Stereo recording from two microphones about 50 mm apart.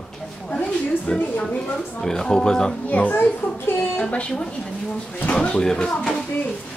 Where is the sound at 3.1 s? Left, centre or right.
Left.